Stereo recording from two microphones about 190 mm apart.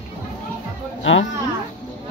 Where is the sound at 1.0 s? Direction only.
80° left.